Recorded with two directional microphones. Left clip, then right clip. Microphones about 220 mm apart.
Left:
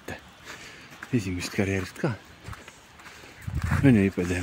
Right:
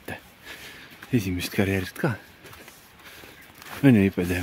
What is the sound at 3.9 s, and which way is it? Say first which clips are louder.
Speech: right 2 dB; 20° right (ahead or behind).